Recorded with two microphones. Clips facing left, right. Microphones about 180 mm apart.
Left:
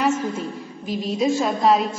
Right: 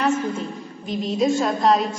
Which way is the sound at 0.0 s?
5° left (ahead or behind).